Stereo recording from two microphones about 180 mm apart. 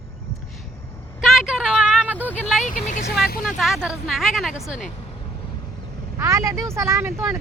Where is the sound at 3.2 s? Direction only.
55° left (ahead or behind).